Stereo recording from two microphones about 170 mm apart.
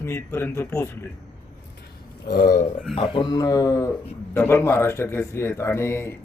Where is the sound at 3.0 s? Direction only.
30° left (ahead or behind).